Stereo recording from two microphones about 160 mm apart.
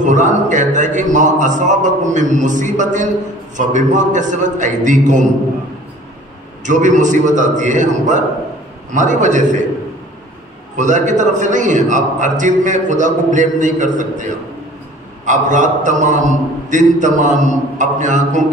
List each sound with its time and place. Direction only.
0.0 s a man's voice: 50° right (ahead or behind)
6.6 s a man's voice: 50° right (ahead or behind)
10.8 s a man's voice: 50° right (ahead or behind)